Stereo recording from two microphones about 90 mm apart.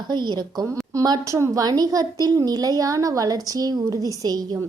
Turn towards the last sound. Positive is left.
turn(degrees=-45)  # may be behind; listen again after turning